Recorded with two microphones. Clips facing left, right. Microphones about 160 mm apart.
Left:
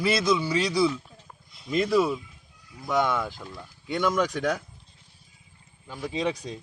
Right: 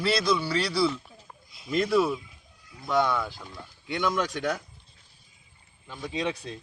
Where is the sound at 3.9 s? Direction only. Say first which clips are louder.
Left 3 dB; centre (ahead or behind).